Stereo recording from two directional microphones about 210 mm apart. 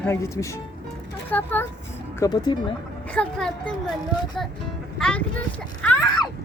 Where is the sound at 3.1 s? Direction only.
5° left (ahead or behind).